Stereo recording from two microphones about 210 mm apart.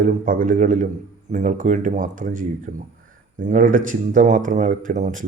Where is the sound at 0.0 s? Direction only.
40° right (ahead or behind).